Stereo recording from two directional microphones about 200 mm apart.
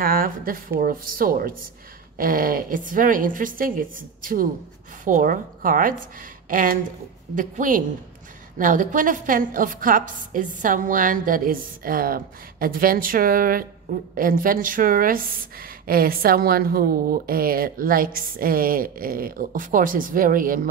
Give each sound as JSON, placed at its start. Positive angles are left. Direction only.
{"t": 0.0, "sound": "a woman's voice", "side_deg": -45}